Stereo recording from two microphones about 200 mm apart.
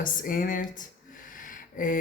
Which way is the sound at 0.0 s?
40° left (ahead or behind).